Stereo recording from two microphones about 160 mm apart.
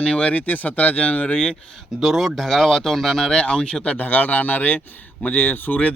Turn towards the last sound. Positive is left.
turn(degrees=10)  # may be behind; listen again after turning